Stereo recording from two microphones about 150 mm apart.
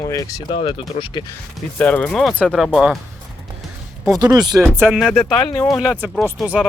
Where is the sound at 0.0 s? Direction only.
20° left (ahead or behind).